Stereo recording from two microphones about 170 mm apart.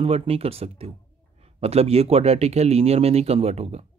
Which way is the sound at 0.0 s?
35° right (ahead or behind).